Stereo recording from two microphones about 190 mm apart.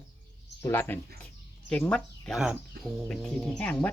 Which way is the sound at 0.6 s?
10° left (ahead or behind).